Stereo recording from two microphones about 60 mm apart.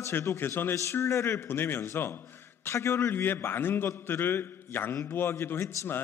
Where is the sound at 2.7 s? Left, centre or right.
Left.